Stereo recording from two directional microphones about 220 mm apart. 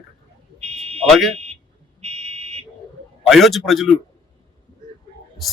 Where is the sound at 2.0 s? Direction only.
30° right (ahead or behind).